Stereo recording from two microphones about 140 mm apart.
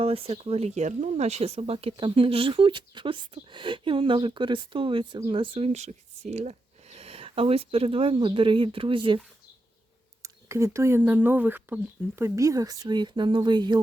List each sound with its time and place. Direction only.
0.0 s speech: 45° right (ahead or behind)
10.2 s speech: 20° right (ahead or behind)